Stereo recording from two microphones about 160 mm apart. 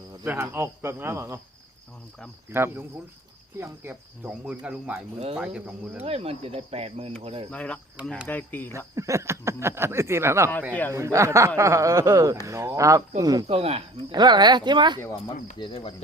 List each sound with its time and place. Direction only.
0.3 s speech: 15° right (ahead or behind)
2.5 s speech: 15° right (ahead or behind)
6.0 s speech: 40° right (ahead or behind)
7.5 s speech: 10° left (ahead or behind)
9.0 s speech: 20° right (ahead or behind)
10.7 s speech: 10° left (ahead or behind)
10.9 s speech: 20° right (ahead or behind)
13.5 s speech: 40° right (ahead or behind)
14.1 s speech: 25° right (ahead or behind)
15.5 s speech: 35° left (ahead or behind)